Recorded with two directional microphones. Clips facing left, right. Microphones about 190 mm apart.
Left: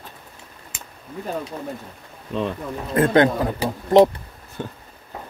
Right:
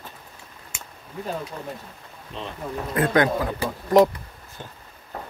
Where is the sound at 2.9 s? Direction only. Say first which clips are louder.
Left 4 dB; 25° left (ahead or behind).